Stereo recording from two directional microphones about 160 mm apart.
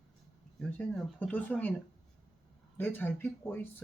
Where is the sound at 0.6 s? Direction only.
10° left (ahead or behind).